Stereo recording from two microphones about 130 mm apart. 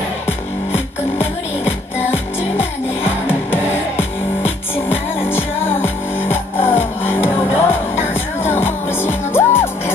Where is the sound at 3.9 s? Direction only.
15° left (ahead or behind).